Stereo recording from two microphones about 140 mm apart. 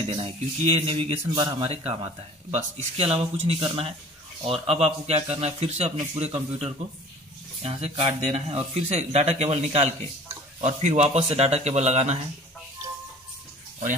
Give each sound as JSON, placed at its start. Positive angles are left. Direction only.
{"t": 0.1, "sound": "speech", "side_deg": -40}